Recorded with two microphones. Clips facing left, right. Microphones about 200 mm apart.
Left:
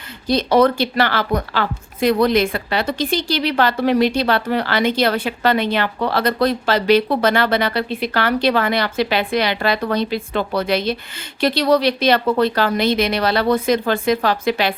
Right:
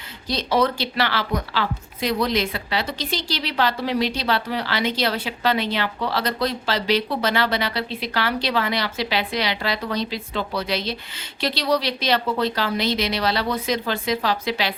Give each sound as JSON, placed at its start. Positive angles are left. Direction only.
{"t": 0.3, "sound": "speech", "side_deg": 55}